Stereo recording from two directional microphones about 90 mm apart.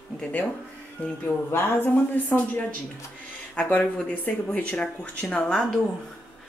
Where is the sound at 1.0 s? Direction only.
25° left (ahead or behind).